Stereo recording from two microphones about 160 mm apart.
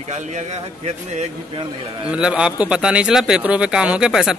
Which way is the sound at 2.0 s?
5° right (ahead or behind).